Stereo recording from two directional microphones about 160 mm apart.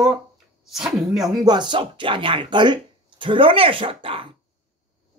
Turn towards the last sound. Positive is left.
turn(degrees=-35)  # may be behind; listen again after turning